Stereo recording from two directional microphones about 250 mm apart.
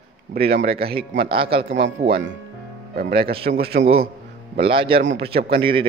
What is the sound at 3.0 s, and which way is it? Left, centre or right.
Speech, right.